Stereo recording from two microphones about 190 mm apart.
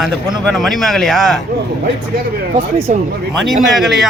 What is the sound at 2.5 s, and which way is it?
Speech, 40° right (ahead or behind).